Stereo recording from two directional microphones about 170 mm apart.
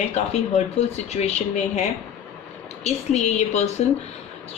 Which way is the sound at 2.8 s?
40° left (ahead or behind).